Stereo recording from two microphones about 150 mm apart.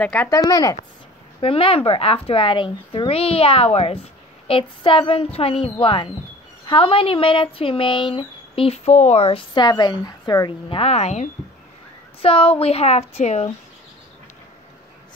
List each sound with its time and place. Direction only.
0.0 s speech: 10° left (ahead or behind)
0.5 s a woman's voice: 25° left (ahead or behind)
1.4 s speech: 40° left (ahead or behind)
9.5 s a woman's voice: 30° left (ahead or behind)
10.8 s speech: 45° left (ahead or behind)